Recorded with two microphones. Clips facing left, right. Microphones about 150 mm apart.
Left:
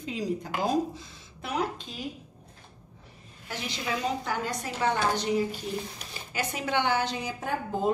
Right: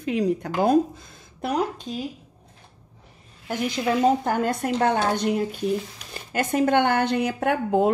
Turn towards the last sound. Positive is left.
turn(degrees=-70)  # may be behind; listen again after turning